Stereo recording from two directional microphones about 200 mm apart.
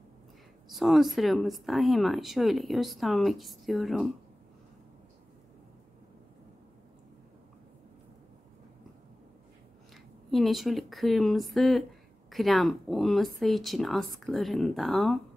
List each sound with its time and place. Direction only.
0.7 s speech: centre (ahead or behind)
10.3 s speech: centre (ahead or behind)